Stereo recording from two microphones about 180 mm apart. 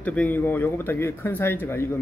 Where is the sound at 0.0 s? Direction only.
10° left (ahead or behind).